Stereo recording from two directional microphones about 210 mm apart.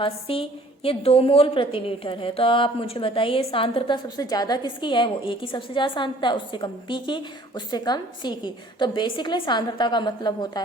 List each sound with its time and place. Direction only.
0.0 s a woman's voice: 25° left (ahead or behind)